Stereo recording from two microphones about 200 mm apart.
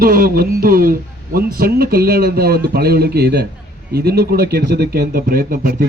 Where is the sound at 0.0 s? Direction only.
45° right (ahead or behind).